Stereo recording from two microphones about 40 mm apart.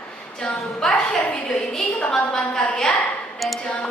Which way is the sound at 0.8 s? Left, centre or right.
Centre.